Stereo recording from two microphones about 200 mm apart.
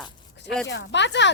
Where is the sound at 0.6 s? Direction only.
65° left (ahead or behind).